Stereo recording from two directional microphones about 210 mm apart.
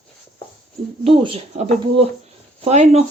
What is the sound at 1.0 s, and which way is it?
Speech, 25° right (ahead or behind).